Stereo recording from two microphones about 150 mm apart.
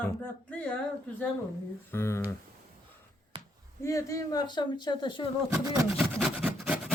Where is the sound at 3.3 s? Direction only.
35° right (ahead or behind).